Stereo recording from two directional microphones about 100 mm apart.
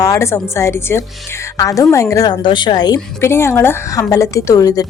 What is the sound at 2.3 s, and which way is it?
Speech, 50° left (ahead or behind).